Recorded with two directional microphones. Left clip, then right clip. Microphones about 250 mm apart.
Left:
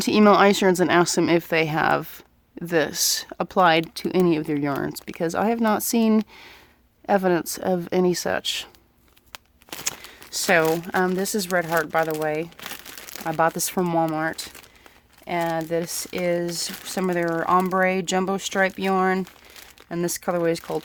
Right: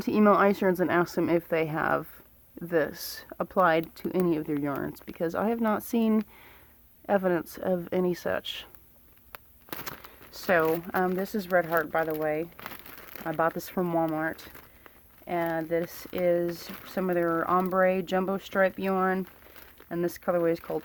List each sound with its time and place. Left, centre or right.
0.0 s speech: left
9.3 s walk: centre
10.3 s speech: left